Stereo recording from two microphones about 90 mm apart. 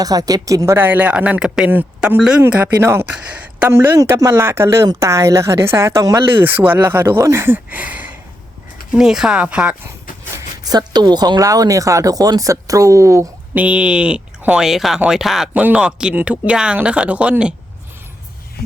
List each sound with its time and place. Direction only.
0.0 s speech: 45° right (ahead or behind)
0.8 s speech: 20° right (ahead or behind)
2.8 s speech: 25° right (ahead or behind)
3.1 s speech: 15° right (ahead or behind)
3.7 s speech: 30° right (ahead or behind)
6.4 s speech: 20° right (ahead or behind)
8.9 s speech: 5° right (ahead or behind)
10.3 s speech: 45° right (ahead or behind)
13.5 s speech: 15° right (ahead or behind)